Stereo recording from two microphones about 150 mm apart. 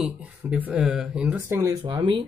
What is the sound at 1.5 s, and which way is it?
Speech, 20° right (ahead or behind).